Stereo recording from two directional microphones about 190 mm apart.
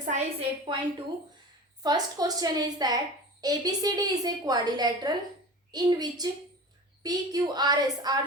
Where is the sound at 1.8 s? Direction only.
20° right (ahead or behind).